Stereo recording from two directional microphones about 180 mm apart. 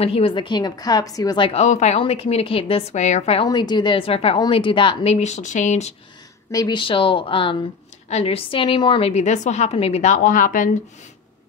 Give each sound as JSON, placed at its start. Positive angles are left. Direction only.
{"t": 0.0, "sound": "a woman's voice", "side_deg": 30}
{"t": 3.4, "sound": "a woman's voice", "side_deg": 25}
{"t": 6.5, "sound": "a woman's voice", "side_deg": 25}